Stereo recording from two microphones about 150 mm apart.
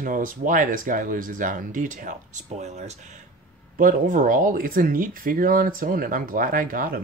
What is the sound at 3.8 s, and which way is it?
Speech, 60° right (ahead or behind).